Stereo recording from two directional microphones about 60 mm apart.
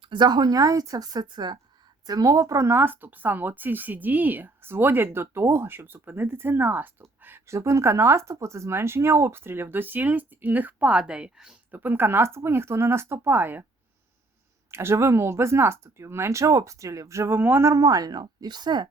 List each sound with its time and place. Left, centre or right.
0.5 s a woman's voice: right
2.7 s speech: right
7.2 s a sound: right
7.4 s speech: right; by 11.5 s centre
11.7 s speech: right
14.7 s speech: right
17.7 s speech: right